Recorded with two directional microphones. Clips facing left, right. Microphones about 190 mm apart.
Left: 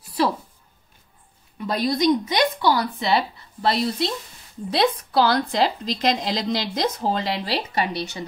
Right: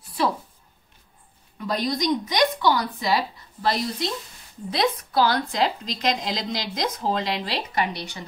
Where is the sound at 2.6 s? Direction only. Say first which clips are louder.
Left 1 dB; 30° left (ahead or behind).